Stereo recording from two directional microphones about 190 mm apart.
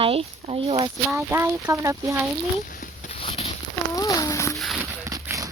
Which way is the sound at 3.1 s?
30° left (ahead or behind).